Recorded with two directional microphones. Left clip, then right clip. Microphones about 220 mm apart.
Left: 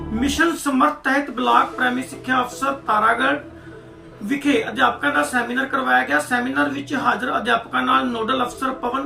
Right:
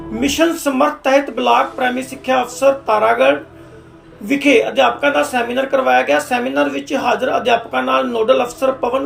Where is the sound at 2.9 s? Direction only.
10° left (ahead or behind).